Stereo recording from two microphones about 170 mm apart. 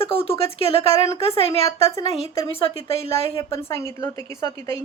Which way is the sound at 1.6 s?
20° left (ahead or behind).